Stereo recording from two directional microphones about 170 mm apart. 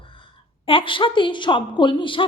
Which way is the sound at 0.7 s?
30° left (ahead or behind).